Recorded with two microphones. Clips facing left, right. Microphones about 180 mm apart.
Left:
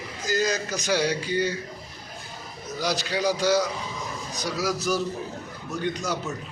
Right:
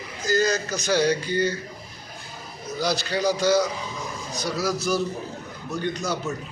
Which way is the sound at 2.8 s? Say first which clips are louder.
Right 2 dB; 10° left (ahead or behind).